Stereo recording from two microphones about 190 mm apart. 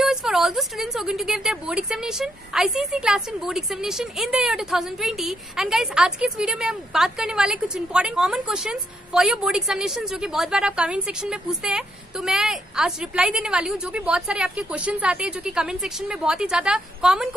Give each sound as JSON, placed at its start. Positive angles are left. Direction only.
{"t": 0.0, "sound": "a woman's voice", "side_deg": 0}